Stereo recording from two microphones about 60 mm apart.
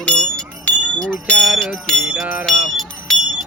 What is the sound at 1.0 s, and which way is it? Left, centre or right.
Speech, centre.